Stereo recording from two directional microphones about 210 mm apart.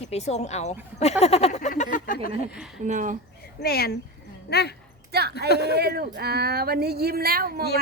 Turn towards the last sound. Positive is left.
turn(degrees=-45)  # may be behind; listen again after turning